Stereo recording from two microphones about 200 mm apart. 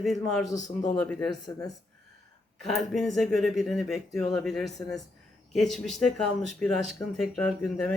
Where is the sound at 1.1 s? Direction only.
5° left (ahead or behind).